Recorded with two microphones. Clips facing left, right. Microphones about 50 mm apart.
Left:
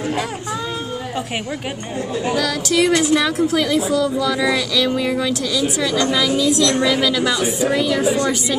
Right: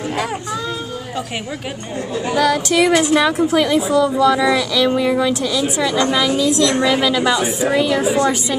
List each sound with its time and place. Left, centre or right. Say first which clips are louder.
2.3 s speech: right 5 dB; right